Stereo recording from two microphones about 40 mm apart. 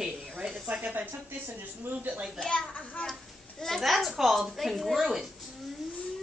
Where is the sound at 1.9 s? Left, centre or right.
Right.